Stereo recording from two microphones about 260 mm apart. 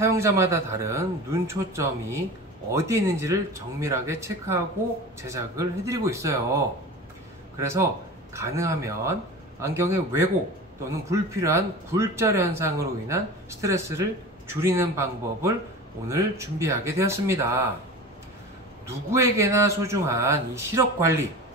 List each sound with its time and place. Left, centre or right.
0.0 s a man's voice: centre
7.5 s a man's voice: centre
18.9 s a man's voice: centre